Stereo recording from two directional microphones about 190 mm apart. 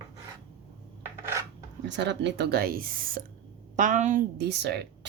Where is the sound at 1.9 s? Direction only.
65° right (ahead or behind); by 4.2 s 40° right (ahead or behind).